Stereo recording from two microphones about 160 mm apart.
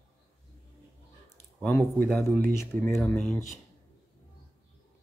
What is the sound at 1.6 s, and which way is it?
Speech, centre (ahead or behind).